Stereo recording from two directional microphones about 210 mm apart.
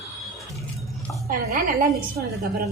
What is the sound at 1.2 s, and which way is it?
Speech, 45° right (ahead or behind).